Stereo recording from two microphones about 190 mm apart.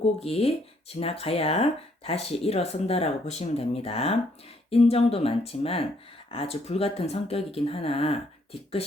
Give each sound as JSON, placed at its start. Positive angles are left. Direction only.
{"t": 0.2, "sound": "speech", "side_deg": 30}